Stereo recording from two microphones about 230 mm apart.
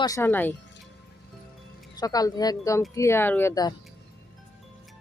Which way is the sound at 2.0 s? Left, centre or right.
Centre.